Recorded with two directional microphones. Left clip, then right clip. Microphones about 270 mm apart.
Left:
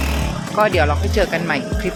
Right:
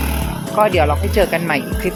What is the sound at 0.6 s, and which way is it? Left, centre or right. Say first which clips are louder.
Speech: right 2 dB; centre.